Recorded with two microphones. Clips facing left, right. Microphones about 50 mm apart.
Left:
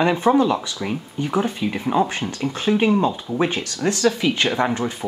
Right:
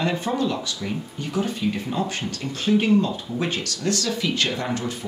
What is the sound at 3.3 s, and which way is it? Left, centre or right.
Speech, left.